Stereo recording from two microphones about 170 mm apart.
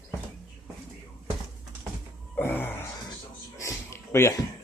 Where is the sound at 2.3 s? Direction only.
10° left (ahead or behind).